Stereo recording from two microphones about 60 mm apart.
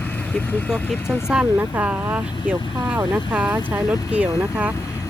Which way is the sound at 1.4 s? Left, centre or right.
Right.